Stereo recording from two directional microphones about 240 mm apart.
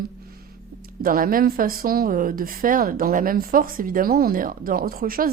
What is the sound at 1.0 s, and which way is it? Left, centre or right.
A woman's voice, right.